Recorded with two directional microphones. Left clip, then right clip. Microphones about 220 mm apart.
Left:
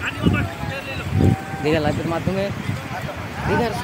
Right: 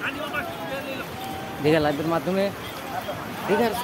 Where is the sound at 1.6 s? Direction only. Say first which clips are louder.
Even; centre (ahead or behind).